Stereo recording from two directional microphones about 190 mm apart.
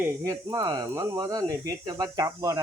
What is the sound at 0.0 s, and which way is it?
Speech, 15° right (ahead or behind).